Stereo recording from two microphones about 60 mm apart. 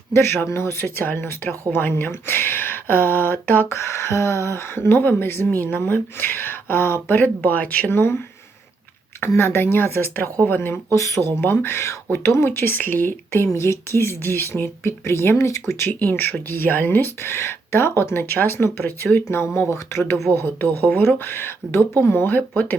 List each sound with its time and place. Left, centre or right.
0.1 s speech: left
7.9 s speech: left
9.4 s speech: left
10.9 s speech: left
11.2 s speech: left
13.6 s speech: left